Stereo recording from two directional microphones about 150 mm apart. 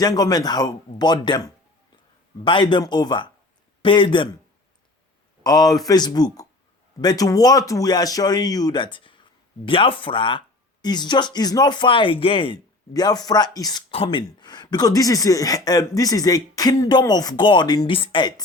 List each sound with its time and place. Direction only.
0.0 s speech: 25° left (ahead or behind)
2.4 s speech: 30° left (ahead or behind)
5.4 s speech: 25° left (ahead or behind)
13.9 s speech: 35° left (ahead or behind)